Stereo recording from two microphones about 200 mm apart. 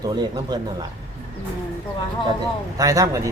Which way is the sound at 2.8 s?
15° right (ahead or behind).